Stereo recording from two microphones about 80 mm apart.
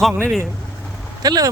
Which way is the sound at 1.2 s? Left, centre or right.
Right.